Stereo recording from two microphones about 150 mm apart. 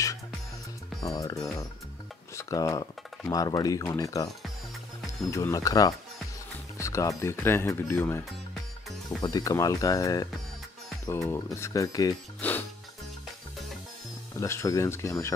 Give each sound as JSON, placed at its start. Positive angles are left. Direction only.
{"t": 1.0, "sound": "speech", "side_deg": 25}
{"t": 5.3, "sound": "speech", "side_deg": 20}
{"t": 9.2, "sound": "speech", "side_deg": 25}
{"t": 12.4, "sound": "music", "side_deg": 10}
{"t": 14.4, "sound": "speech", "side_deg": 20}